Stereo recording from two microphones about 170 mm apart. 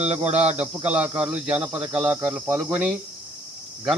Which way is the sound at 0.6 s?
5° right (ahead or behind).